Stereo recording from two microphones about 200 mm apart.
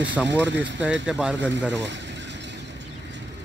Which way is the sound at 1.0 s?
5° right (ahead or behind).